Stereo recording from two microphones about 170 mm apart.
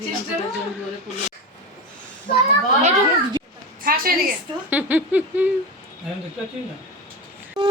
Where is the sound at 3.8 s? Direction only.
60° right (ahead or behind).